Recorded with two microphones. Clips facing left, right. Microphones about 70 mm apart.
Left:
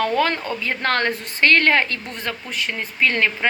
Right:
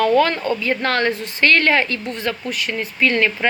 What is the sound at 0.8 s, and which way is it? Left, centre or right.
A woman's voice, left.